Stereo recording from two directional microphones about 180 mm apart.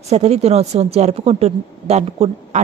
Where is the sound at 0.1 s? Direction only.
35° right (ahead or behind).